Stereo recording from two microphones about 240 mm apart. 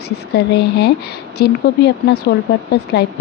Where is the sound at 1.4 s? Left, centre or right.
Left.